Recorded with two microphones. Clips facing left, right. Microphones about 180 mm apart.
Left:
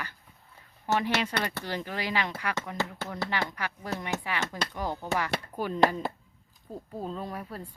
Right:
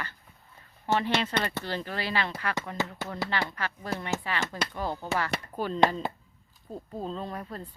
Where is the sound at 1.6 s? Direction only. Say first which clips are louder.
Even; 15° left (ahead or behind).